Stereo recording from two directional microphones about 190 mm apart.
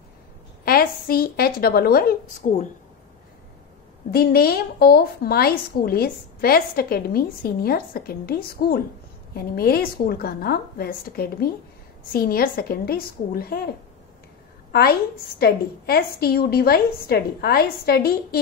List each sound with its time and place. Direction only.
0.7 s a woman's voice: 50° left (ahead or behind)
2.4 s speech: 40° left (ahead or behind)
4.1 s a woman's voice: 55° left (ahead or behind)
14.7 s a woman's voice: 55° left (ahead or behind)